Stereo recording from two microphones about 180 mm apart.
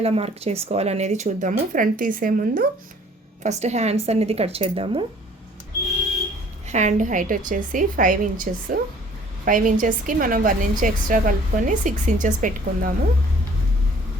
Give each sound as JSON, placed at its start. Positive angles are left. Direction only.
{"t": 0.0, "sound": "speech", "side_deg": -35}
{"t": 3.4, "sound": "speech", "side_deg": -40}
{"t": 6.7, "sound": "a woman's voice", "side_deg": -40}